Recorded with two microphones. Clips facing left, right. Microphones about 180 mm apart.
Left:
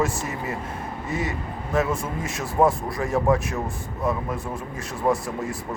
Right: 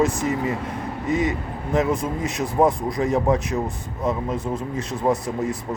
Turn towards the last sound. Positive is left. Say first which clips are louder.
# right 2 dB
turn(degrees=-20)  # may be behind; listen again after turning